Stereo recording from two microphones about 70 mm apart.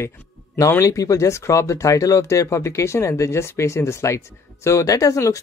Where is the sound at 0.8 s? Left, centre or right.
Left.